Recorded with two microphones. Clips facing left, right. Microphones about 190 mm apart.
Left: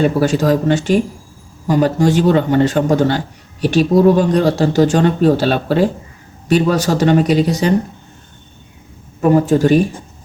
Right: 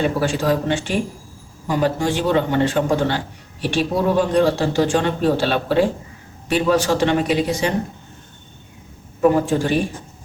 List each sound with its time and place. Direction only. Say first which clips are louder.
0.0 s a man's voice: left 6 dB; 40° left (ahead or behind)
9.3 s speech: left 7 dB; 40° left (ahead or behind)